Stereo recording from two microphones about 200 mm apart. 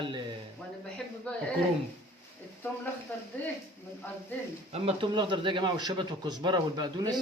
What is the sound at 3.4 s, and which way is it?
Speech, 10° left (ahead or behind).